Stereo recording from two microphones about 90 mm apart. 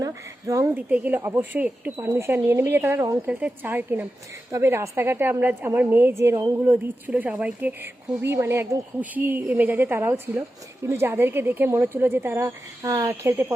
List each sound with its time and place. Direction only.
0.0 s speech: 40° right (ahead or behind)
0.9 s a woman's voice: 15° right (ahead or behind)
3.2 s a woman's voice: 15° right (ahead or behind)
8.2 s a woman's voice: 30° right (ahead or behind)